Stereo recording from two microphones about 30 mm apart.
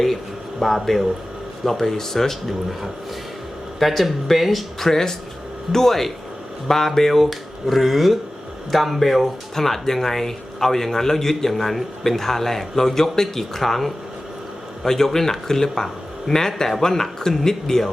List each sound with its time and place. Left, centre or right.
0.6 s a man's voice: centre
2.5 s speech: centre
4.9 s a man's voice: centre